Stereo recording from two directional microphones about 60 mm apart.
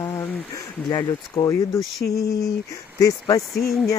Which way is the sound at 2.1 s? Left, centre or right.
Left.